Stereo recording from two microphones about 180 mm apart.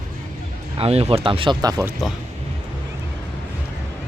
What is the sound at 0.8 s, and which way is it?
Speech, 35° right (ahead or behind).